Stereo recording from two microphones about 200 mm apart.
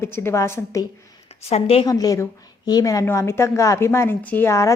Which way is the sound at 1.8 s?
20° left (ahead or behind).